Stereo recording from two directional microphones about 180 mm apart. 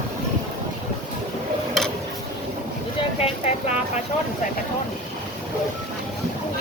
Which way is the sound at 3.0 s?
30° left (ahead or behind).